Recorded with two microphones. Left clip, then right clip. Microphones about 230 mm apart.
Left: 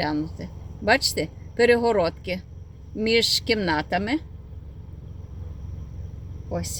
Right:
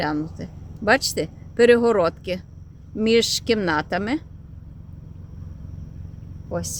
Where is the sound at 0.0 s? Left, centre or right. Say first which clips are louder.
Right 1 dB; centre.